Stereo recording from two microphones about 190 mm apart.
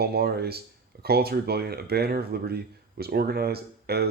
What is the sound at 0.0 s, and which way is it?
Speech, 55° right (ahead or behind).